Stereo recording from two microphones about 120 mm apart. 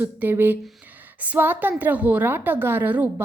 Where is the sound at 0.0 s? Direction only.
15° right (ahead or behind).